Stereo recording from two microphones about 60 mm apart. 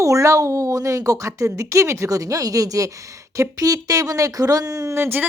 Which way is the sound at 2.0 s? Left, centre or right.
Right.